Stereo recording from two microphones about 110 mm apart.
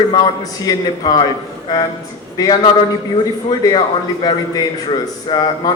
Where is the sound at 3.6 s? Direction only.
40° left (ahead or behind).